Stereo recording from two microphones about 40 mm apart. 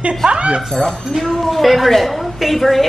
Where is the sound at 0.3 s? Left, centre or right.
Right.